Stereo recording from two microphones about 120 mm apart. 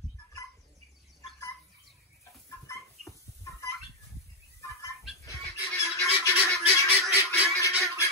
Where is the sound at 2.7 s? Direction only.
25° left (ahead or behind).